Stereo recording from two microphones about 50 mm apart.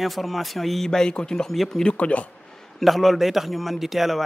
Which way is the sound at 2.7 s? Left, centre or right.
Centre.